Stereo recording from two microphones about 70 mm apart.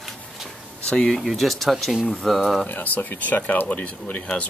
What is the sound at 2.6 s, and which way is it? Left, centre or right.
Speech, left.